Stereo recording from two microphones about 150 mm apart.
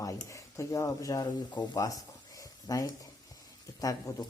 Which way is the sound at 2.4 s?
20° left (ahead or behind).